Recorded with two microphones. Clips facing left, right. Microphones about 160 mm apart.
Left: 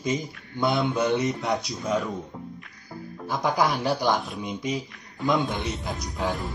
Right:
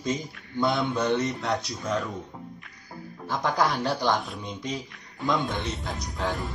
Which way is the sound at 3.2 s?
10° left (ahead or behind).